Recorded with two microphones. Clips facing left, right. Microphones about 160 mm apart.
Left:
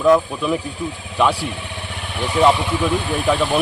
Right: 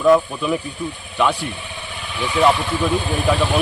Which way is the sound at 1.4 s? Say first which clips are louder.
Left 2 dB; 75° left (ahead or behind).